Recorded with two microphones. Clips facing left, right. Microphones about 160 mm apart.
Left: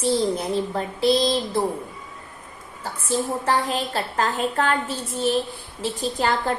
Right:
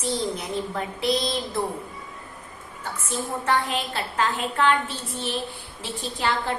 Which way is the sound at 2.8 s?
35° left (ahead or behind).